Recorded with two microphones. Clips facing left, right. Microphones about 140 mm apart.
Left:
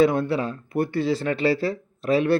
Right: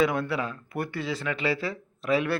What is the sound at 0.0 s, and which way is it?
Speech, 25° left (ahead or behind).